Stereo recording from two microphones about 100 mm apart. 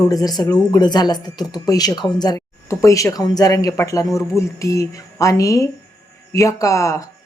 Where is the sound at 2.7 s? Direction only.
30° left (ahead or behind).